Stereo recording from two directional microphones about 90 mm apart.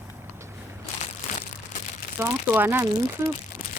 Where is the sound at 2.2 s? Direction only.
25° right (ahead or behind).